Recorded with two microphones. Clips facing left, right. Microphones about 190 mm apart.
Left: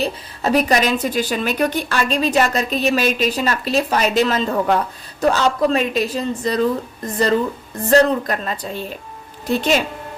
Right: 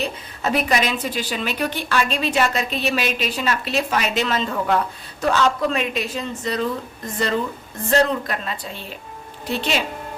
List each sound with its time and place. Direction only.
0.0 s a woman's voice: 35° left (ahead or behind)
7.9 s a woman's voice: 40° left (ahead or behind)